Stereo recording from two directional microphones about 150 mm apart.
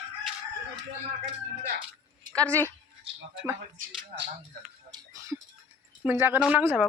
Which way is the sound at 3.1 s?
40° right (ahead or behind).